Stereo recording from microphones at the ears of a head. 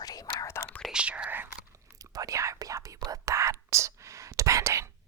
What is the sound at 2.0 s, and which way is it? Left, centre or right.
Whispering, right.